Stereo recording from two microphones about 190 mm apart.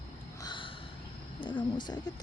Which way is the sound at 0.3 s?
25° left (ahead or behind).